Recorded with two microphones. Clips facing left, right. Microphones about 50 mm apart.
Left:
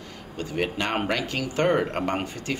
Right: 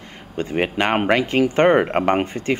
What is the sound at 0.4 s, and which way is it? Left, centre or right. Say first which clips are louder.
Speech: right 7 dB; right.